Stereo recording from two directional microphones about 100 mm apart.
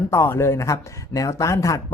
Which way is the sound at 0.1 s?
25° left (ahead or behind).